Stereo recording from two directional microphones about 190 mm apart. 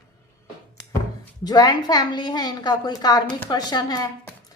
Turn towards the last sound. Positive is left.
turn(degrees=20)  # may be behind; listen again after turning